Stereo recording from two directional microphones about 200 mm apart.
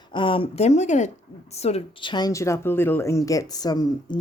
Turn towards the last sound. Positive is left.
turn(degrees=20)  # may be behind; listen again after turning